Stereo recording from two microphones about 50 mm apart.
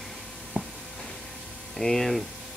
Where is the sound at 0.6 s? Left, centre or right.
Right.